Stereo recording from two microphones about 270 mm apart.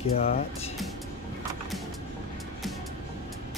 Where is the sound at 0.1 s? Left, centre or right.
Left.